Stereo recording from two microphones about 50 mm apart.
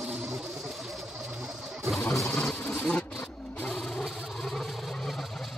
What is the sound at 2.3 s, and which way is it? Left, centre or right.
Insect, left.